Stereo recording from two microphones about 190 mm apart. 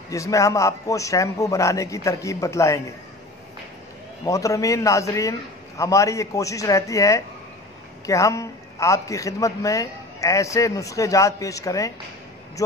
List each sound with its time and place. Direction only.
0.1 s a man's voice: 15° left (ahead or behind)
4.3 s a man's voice: 15° left (ahead or behind)